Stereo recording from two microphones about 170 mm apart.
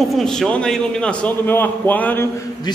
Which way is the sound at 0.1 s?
Centre (ahead or behind).